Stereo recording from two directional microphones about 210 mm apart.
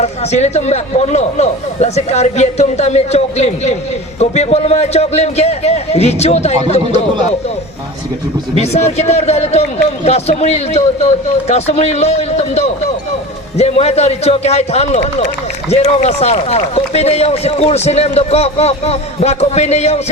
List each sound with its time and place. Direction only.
0.0 s speech: 30° left (ahead or behind)
8.5 s speech: 30° left (ahead or behind)